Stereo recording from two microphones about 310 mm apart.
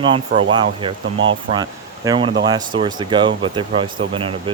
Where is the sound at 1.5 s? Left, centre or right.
Centre.